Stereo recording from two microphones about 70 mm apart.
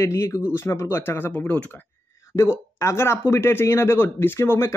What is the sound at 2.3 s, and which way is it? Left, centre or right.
Speech, left.